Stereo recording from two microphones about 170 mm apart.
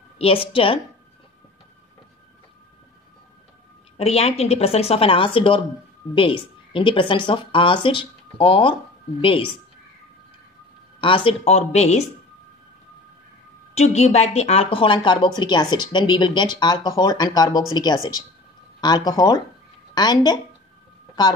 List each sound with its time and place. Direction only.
0.2 s a woman's voice: 30° left (ahead or behind)
4.0 s a woman's voice: 35° left (ahead or behind)
11.0 s a woman's voice: 30° left (ahead or behind)
13.7 s a woman's voice: 40° left (ahead or behind); by 20.3 s 25° left (ahead or behind)